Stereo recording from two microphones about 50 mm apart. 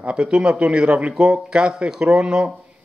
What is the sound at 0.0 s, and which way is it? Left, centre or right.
Speech, right.